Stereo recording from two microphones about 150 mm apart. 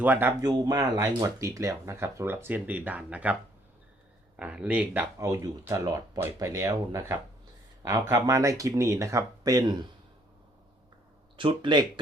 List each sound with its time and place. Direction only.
0.0 s speech: 15° right (ahead or behind)
4.4 s speech: 10° right (ahead or behind)
5.1 s speech: 20° right (ahead or behind)
11.3 s speech: 35° right (ahead or behind)